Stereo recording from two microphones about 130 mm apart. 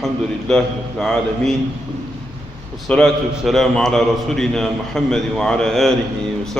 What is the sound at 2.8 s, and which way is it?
A man's voice, 5° left (ahead or behind).